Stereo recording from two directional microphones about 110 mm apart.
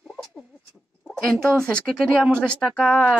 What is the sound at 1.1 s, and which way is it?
Speech, centre (ahead or behind).